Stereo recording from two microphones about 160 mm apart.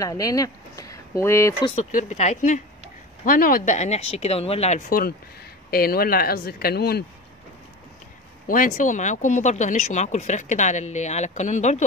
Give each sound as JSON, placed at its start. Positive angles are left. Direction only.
{"t": 0.0, "sound": "speech", "side_deg": 20}
{"t": 1.8, "sound": "speech", "side_deg": 55}
{"t": 3.3, "sound": "speech", "side_deg": 65}
{"t": 4.8, "sound": "speech", "side_deg": 65}
{"t": 8.5, "sound": "speech", "side_deg": 55}